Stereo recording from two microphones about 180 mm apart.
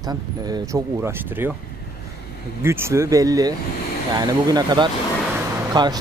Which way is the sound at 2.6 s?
15° right (ahead or behind).